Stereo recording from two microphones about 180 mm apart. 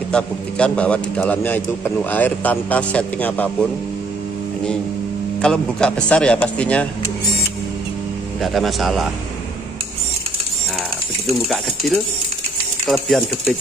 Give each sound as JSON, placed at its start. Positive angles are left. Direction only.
{"t": 0.1, "sound": "a man's voice", "side_deg": 5}
{"t": 5.4, "sound": "a man's voice", "side_deg": 5}
{"t": 8.4, "sound": "speech", "side_deg": 0}
{"t": 12.8, "sound": "speech", "side_deg": 0}